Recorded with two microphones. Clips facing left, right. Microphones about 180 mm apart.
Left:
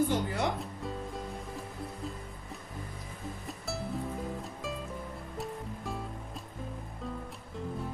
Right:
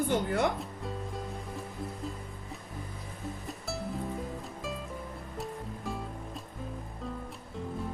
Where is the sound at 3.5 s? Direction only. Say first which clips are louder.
Left 1 dB; centre (ahead or behind).